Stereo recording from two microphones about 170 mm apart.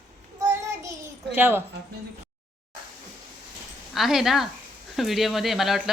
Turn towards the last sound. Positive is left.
turn(degrees=0)  # may be behind; listen again after turning